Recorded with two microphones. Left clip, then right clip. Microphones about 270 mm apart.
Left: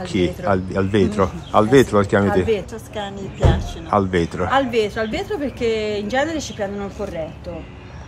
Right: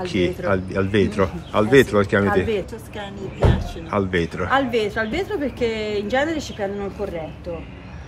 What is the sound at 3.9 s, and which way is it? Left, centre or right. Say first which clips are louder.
A woman's voice: left 4 dB; centre.